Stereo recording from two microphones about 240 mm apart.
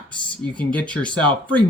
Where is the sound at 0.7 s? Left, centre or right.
Centre.